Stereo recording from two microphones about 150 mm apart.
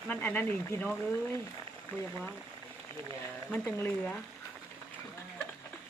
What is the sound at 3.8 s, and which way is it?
Speech, 10° left (ahead or behind).